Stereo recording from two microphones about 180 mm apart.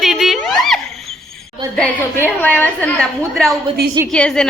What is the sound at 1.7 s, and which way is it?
A woman's voice, 10° left (ahead or behind).